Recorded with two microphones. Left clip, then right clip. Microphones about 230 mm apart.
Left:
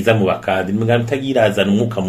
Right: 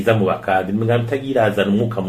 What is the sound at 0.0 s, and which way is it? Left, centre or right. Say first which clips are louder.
Speech: left 2 dB; left.